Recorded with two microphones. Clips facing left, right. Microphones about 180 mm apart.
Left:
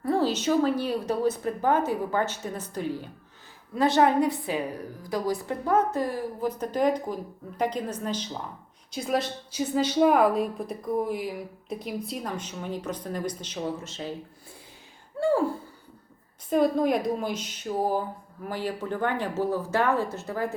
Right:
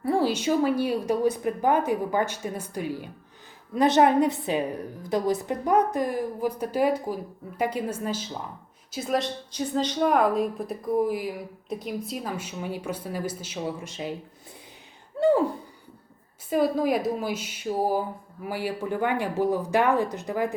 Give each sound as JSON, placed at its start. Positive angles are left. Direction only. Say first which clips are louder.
{"t": 0.0, "sound": "a woman's voice", "louder": "right 1 dB", "side_deg": -10}
{"t": 15.2, "sound": "a sound", "louder": "right 3 dB", "side_deg": -20}
{"t": 16.5, "sound": "a woman's voice", "louder": "even", "side_deg": -5}